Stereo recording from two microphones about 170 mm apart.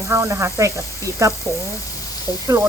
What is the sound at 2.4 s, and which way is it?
Speech, 20° right (ahead or behind).